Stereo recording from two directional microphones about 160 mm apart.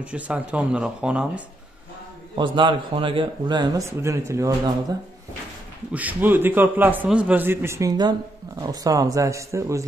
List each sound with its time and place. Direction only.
0.0 s a man's voice: 5° right (ahead or behind)
2.3 s a man's voice: 30° right (ahead or behind)
5.9 s a man's voice: 10° right (ahead or behind)